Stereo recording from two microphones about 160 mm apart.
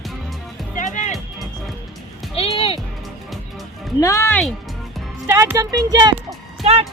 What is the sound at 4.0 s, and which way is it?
Speech, 20° left (ahead or behind).